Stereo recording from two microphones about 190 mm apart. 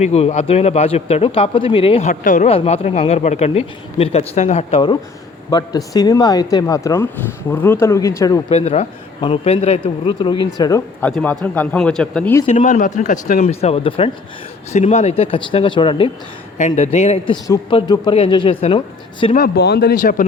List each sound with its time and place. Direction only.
0.0 s a man's voice: 35° left (ahead or behind); by 8.4 s 15° left (ahead or behind)
8.4 s a man's voice: 35° left (ahead or behind); by 11.1 s 15° left (ahead or behind)
11.1 s speech: 5° left (ahead or behind)
12.5 s speech: 35° left (ahead or behind)
13.4 s speech: 30° left (ahead or behind)
16.6 s speech: 35° left (ahead or behind)
17.4 s a man's voice: 20° left (ahead or behind)
19.4 s speech: 55° left (ahead or behind)